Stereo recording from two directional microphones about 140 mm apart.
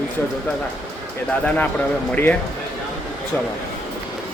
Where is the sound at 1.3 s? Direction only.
10° left (ahead or behind).